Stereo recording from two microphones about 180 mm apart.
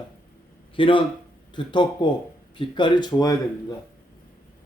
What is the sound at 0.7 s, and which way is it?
A man's voice, 30° left (ahead or behind).